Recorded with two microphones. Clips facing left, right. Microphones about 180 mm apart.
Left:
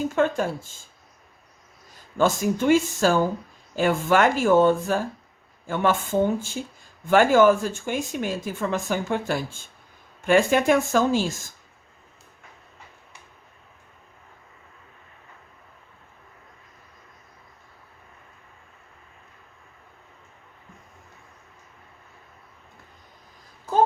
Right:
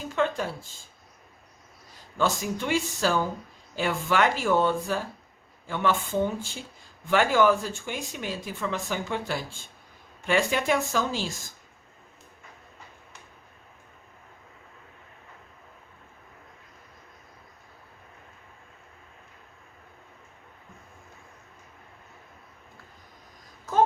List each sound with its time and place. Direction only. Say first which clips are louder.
0.2 s speech: left 3 dB; 50° left (ahead or behind)
2.1 s speech: left 5 dB; 50° left (ahead or behind)